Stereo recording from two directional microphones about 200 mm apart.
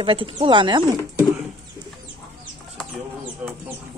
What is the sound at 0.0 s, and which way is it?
Speech, 25° right (ahead or behind).